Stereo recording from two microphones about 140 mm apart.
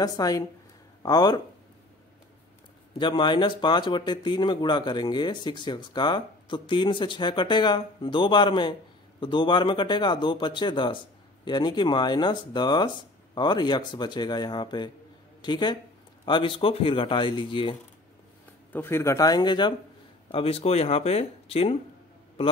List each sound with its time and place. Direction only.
0.0 s speech: 25° left (ahead or behind)
3.0 s speech: 35° left (ahead or behind)
18.7 s speech: 15° left (ahead or behind); by 19.7 s 30° left (ahead or behind)
20.2 s speech: 45° left (ahead or behind)